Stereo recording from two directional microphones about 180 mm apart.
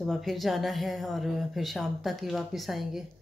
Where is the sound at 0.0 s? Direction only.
Centre (ahead or behind).